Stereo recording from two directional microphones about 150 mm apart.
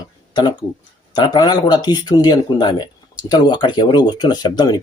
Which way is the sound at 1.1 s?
30° left (ahead or behind).